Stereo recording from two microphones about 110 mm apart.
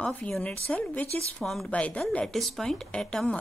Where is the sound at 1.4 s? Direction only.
Centre (ahead or behind).